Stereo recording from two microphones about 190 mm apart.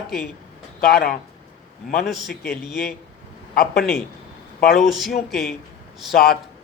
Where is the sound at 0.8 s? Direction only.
50° left (ahead or behind).